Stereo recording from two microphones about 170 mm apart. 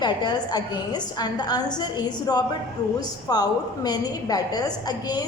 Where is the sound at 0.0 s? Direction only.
25° left (ahead or behind).